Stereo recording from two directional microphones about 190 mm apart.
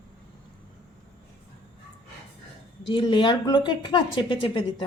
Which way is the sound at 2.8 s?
25° left (ahead or behind).